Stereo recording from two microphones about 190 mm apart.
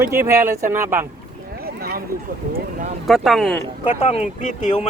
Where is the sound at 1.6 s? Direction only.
55° right (ahead or behind).